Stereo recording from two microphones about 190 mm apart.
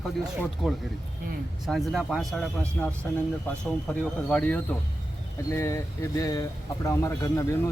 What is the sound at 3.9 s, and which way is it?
Speech, 10° left (ahead or behind).